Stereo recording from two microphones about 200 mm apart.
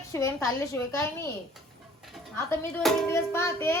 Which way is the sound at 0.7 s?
15° left (ahead or behind).